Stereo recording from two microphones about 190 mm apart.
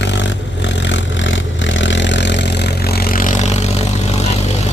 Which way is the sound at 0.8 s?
75° left (ahead or behind).